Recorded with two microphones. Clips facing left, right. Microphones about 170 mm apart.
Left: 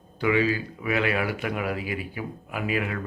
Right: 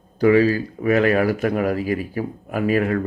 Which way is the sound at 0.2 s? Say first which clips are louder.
Right 8 dB; 40° right (ahead or behind).